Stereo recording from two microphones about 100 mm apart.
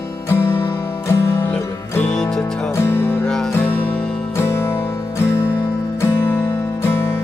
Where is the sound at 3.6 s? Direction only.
20° left (ahead or behind).